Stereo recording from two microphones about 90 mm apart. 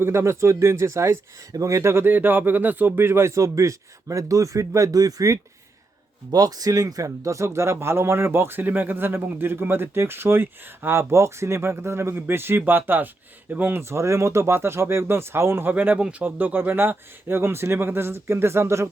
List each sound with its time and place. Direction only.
0.0 s speech: 30° right (ahead or behind)